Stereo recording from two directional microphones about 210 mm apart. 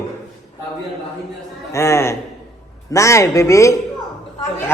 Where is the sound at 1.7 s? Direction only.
15° left (ahead or behind).